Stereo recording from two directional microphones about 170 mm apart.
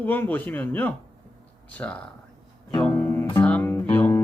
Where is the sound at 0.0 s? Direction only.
10° left (ahead or behind).